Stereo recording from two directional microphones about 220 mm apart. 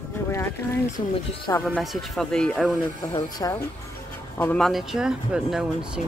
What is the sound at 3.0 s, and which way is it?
Speech, 15° left (ahead or behind).